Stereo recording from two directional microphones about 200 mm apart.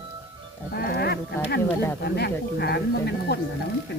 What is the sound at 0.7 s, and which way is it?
Sheep, 50° left (ahead or behind).